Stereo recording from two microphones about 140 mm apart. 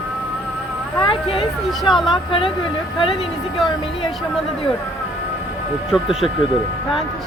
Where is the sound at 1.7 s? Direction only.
Centre (ahead or behind).